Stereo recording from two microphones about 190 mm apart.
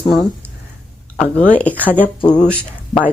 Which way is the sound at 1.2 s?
5° left (ahead or behind).